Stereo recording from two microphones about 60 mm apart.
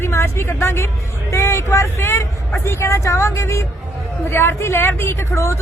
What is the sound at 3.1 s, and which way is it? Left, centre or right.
Speech, left.